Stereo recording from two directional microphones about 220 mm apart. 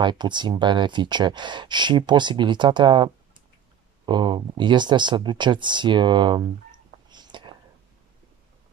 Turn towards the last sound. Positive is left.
turn(degrees=-20)  # may be behind; listen again after turning